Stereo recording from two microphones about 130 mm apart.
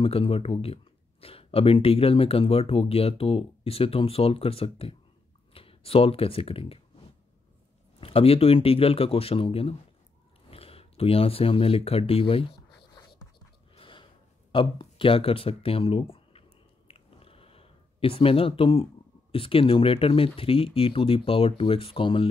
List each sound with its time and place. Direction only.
0.0 s speech: 45° left (ahead or behind)
8.0 s speech: 45° left (ahead or behind)
13.7 s gasp: 40° left (ahead or behind)
14.5 s a sound: 40° left (ahead or behind)
19.3 s speech: 45° left (ahead or behind)